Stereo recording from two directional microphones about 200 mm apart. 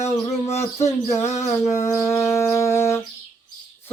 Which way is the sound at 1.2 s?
35° left (ahead or behind).